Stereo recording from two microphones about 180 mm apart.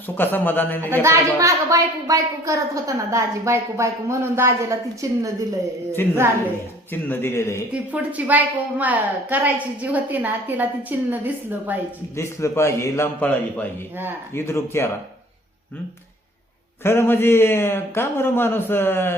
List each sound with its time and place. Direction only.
0.2 s a man's voice: 10° left (ahead or behind)
1.0 s a woman's voice: 15° right (ahead or behind)
6.9 s a man's voice: 10° left (ahead or behind)
7.7 s a woman's voice: 10° right (ahead or behind)
12.1 s a man's voice: 15° left (ahead or behind)
16.8 s a man's voice: 15° left (ahead or behind)